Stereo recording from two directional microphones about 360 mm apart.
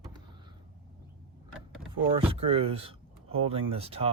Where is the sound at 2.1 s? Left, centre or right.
Centre.